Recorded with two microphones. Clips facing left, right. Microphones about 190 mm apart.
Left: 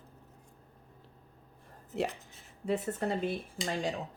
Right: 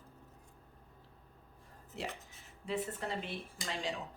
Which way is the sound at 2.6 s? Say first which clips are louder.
Left 6 dB; 45° left (ahead or behind).